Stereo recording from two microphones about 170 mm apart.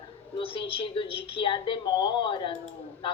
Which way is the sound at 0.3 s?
30° left (ahead or behind).